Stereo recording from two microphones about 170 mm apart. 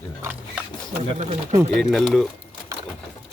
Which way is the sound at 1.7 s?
5° left (ahead or behind).